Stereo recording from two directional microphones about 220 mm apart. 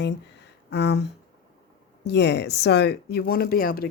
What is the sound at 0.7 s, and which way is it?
Speech, 50° left (ahead or behind).